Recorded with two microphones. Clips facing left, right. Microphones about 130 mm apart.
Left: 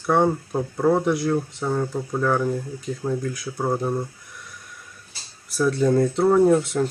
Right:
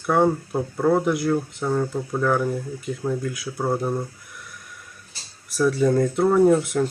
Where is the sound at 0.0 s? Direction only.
Centre (ahead or behind).